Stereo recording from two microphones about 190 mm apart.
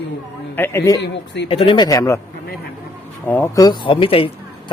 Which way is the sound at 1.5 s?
30° left (ahead or behind).